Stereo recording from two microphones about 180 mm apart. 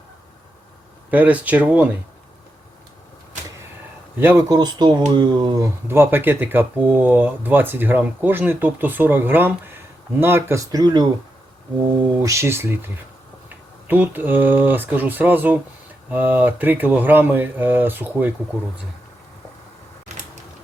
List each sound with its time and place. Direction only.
1.1 s speech: 10° right (ahead or behind)
4.2 s speech: 15° right (ahead or behind)
12.2 s speech: 15° right (ahead or behind)